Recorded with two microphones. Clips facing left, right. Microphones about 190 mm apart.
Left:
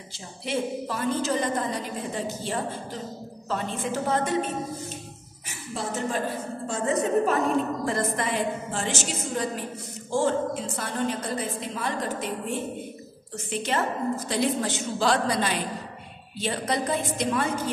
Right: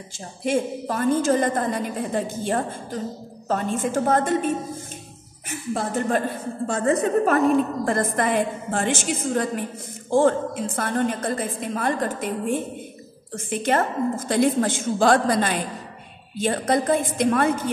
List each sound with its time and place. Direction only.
0.4 s a woman's voice: 50° right (ahead or behind)
5.5 s a woman's voice: 55° right (ahead or behind)